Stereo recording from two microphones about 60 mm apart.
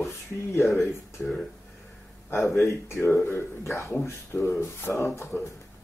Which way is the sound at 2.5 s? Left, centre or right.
Left.